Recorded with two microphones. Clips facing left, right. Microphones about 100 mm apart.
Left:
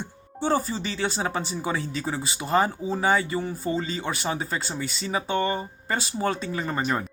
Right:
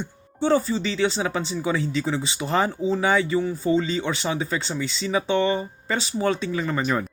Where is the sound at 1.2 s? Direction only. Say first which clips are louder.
Right 3 dB; 35° left (ahead or behind).